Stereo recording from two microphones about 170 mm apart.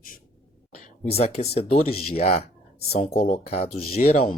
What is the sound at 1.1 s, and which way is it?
Speech, 35° left (ahead or behind).